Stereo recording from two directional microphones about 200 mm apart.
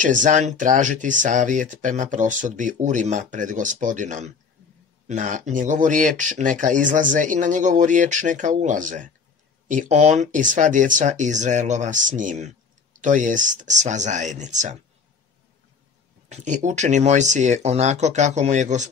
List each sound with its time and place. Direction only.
0.0 s speech: 40° right (ahead or behind)
16.3 s speech: 35° right (ahead or behind)